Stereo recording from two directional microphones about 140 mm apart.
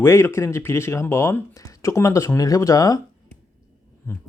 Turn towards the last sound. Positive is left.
turn(degrees=25)  # may be behind; listen again after turning